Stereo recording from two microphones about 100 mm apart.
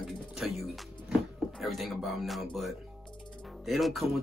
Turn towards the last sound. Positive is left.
turn(degrees=0)  # may be behind; listen again after turning